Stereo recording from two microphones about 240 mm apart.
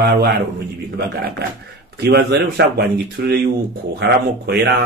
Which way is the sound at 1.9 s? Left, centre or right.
Right.